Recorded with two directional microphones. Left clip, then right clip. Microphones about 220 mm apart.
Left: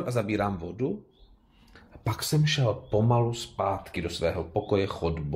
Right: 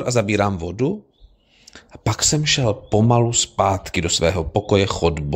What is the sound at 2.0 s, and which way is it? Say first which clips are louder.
Speech: right 10 dB; 45° right (ahead or behind).